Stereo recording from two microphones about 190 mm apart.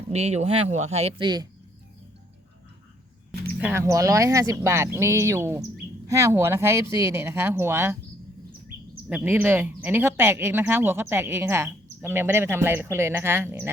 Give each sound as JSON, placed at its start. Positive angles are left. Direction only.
{"t": 0.1, "sound": "speech", "side_deg": -35}
{"t": 3.6, "sound": "speech", "side_deg": -10}
{"t": 9.0, "sound": "speech", "side_deg": -10}